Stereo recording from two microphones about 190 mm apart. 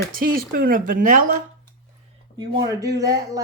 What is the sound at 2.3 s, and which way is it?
Speech, 20° right (ahead or behind).